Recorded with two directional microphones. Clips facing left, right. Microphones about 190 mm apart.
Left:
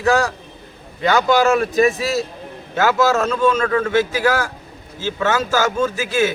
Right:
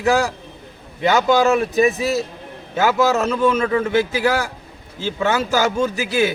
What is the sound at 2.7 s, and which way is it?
A man's voice, 15° right (ahead or behind).